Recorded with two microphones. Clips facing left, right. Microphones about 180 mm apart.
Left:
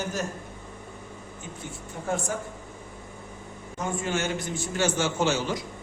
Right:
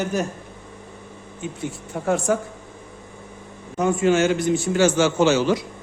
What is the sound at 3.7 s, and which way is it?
A man's voice, 80° right.